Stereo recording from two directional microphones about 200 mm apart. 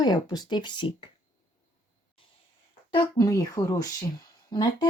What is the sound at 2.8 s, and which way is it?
Speech, 20° left (ahead or behind).